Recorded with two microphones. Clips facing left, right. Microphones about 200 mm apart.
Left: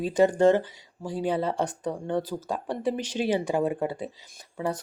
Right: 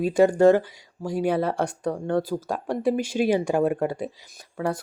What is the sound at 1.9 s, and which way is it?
Speech, 15° left (ahead or behind).